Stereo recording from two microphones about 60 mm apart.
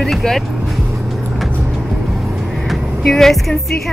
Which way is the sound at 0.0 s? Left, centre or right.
Centre.